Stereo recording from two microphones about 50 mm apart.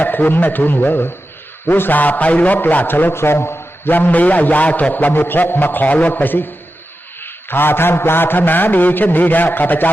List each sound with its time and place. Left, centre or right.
0.0 s mantra: left
3.9 s mantra: left